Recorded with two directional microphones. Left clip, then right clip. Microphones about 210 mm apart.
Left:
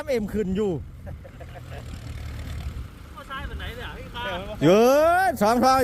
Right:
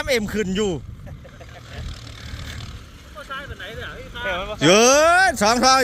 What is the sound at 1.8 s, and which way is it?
Vehicle, 65° left (ahead or behind).